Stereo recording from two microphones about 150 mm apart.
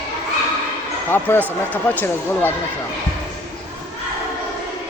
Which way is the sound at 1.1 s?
15° left (ahead or behind).